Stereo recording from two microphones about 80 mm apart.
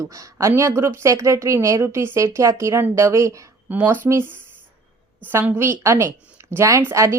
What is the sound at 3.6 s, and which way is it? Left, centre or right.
Speech, right.